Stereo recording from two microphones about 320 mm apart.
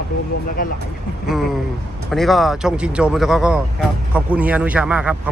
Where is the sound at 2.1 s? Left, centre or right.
Centre.